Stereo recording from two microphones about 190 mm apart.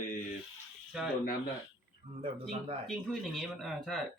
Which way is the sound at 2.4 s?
30° right (ahead or behind).